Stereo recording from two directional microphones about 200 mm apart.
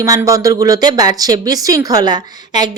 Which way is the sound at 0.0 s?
15° right (ahead or behind).